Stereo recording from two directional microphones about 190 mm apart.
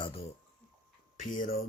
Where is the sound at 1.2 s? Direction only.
45° left (ahead or behind).